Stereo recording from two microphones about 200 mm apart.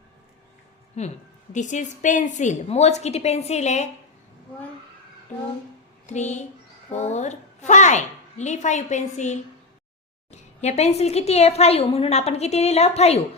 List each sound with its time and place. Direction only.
1.0 s a woman's voice: 35° left (ahead or behind)
6.1 s a woman's voice: 35° left (ahead or behind)